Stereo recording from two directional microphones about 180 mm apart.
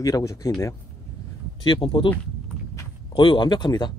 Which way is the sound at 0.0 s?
20° left (ahead or behind).